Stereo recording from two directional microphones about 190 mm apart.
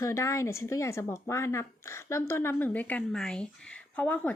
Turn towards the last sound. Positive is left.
turn(degrees=10)  # may be behind; listen again after turning